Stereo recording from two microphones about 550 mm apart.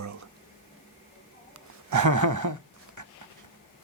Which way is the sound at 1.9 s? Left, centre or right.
Right.